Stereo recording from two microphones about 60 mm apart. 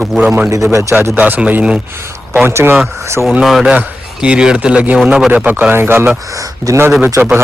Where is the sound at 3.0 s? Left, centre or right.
Right.